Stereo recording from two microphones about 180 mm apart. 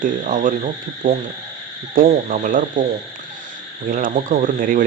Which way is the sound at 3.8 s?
45° right (ahead or behind).